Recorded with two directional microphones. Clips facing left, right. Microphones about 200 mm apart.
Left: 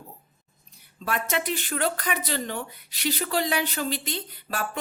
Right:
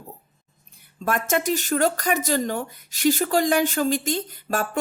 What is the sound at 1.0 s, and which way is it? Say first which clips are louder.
Speech: right 5 dB; 45° right (ahead or behind).